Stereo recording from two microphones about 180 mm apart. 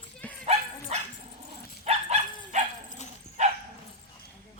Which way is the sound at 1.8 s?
35° right (ahead or behind).